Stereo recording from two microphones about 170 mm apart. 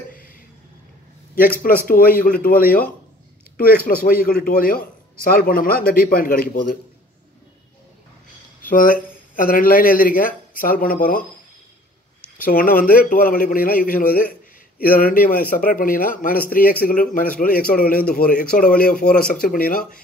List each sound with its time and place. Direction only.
1.7 s speech: 60° left (ahead or behind)
3.5 s speech: 60° left (ahead or behind)
8.6 s speech: 55° left (ahead or behind)
12.4 s speech: 55° left (ahead or behind)